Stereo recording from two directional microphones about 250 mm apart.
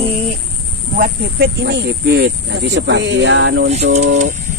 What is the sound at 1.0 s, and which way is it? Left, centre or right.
Speech, right.